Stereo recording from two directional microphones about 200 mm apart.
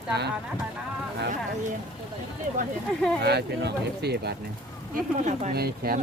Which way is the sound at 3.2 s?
55° right (ahead or behind).